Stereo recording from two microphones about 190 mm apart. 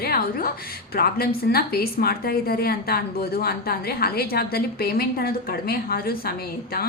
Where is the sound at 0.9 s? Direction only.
50° left (ahead or behind).